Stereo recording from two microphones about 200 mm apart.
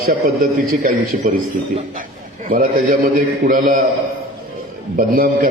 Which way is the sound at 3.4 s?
40° right (ahead or behind).